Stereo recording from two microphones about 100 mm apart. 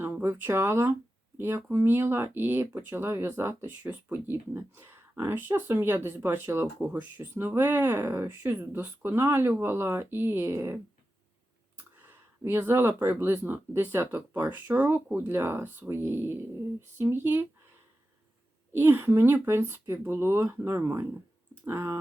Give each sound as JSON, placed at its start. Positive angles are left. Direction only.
{"t": 0.0, "sound": "speech", "side_deg": -25}
{"t": 12.0, "sound": "speech", "side_deg": -25}
{"t": 18.7, "sound": "speech", "side_deg": -25}